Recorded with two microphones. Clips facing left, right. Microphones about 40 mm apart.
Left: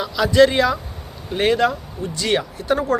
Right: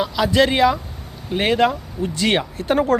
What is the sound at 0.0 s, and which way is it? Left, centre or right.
Speech, centre.